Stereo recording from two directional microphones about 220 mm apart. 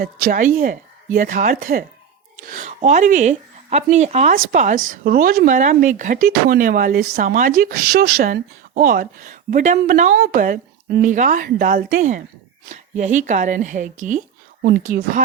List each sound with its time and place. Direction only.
0.0 s speech: 40° right (ahead or behind)